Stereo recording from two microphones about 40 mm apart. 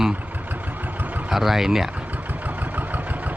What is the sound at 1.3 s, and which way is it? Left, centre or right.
Speech, centre.